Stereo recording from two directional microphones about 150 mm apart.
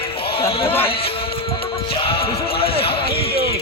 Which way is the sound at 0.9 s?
40° left (ahead or behind).